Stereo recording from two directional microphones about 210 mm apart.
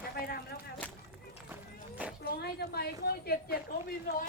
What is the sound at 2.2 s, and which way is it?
A woman's voice, 50° left (ahead or behind).